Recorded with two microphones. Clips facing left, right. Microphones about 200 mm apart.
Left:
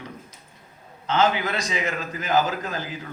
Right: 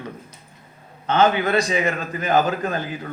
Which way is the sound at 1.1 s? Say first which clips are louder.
Right 4 dB; 60° right (ahead or behind).